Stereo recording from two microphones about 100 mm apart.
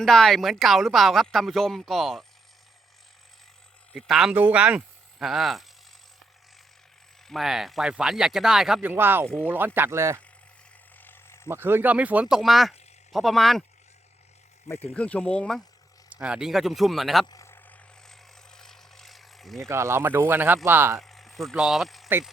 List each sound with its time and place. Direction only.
0.0 s speech: 5° left (ahead or behind)
3.9 s speech: centre (ahead or behind)
4.4 s speech: 15° right (ahead or behind)
5.2 s speech: centre (ahead or behind)
7.3 s speech: centre (ahead or behind)
8.8 s speech: 20° right (ahead or behind)
10.9 s mechanisms: 20° left (ahead or behind)
11.4 s speech: 20° right (ahead or behind); by 13.7 s centre (ahead or behind)
14.9 s speech: 15° left (ahead or behind)
16.0 s speech: 15° right (ahead or behind)
18.1 s vehicle: 5° left (ahead or behind)
19.6 s speech: 30° right (ahead or behind)
21.0 s a sound: centre (ahead or behind)
21.5 s speech: 5° right (ahead or behind)